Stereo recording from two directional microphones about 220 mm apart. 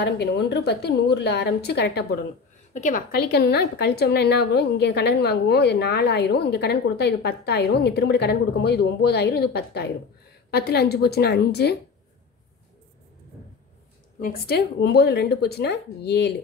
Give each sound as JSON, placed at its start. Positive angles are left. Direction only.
{"t": 0.0, "sound": "a woman's voice", "side_deg": 50}
{"t": 2.7, "sound": "a woman's voice", "side_deg": 35}
{"t": 14.2, "sound": "a woman's voice", "side_deg": 45}